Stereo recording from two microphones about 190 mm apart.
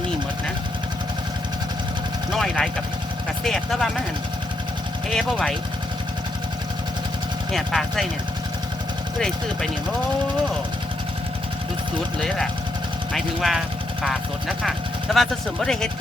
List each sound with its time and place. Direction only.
2.3 s speech: centre (ahead or behind)
5.1 s speech: 5° left (ahead or behind)
7.5 s speech: centre (ahead or behind)
9.1 s speech: 5° left (ahead or behind)
13.1 s speech: centre (ahead or behind)